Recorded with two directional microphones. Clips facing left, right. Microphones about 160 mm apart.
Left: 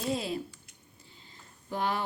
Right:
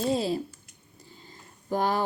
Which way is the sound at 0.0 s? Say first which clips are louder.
Right 6 dB; 35° right (ahead or behind).